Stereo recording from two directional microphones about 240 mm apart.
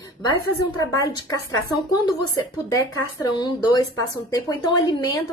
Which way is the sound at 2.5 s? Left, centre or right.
Centre.